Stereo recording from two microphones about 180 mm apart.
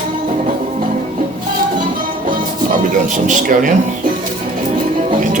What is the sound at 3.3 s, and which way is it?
Speech, 45° right (ahead or behind).